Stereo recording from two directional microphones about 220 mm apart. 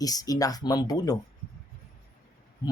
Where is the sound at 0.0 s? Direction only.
15° left (ahead or behind).